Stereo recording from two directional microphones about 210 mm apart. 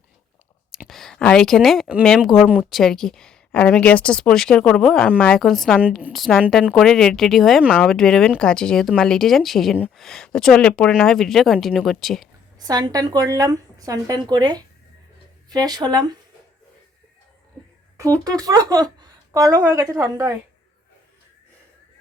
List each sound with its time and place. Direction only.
0.7 s speech: centre (ahead or behind)
12.5 s a woman's voice: 20° right (ahead or behind)
18.0 s a woman's voice: 15° right (ahead or behind)